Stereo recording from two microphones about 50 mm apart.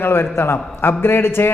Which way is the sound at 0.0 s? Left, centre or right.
Left.